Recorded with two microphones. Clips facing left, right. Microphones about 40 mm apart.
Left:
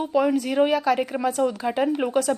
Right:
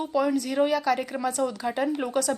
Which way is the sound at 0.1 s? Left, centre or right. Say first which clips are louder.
Left 4 dB; left.